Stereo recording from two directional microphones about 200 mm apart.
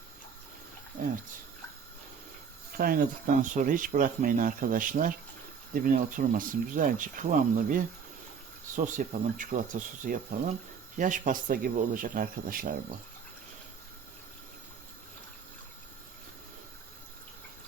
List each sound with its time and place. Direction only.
2.7 s speech: 45° right (ahead or behind)